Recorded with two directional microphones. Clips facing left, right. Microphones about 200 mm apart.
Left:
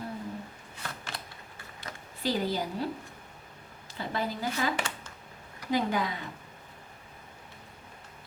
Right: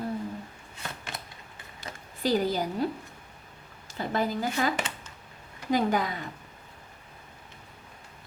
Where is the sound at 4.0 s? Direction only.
45° right (ahead or behind).